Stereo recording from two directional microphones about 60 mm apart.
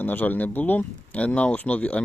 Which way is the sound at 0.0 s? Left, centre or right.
Left.